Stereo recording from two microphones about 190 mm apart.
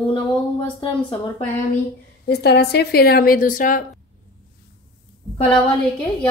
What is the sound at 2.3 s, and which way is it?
Speech, 60° left (ahead or behind).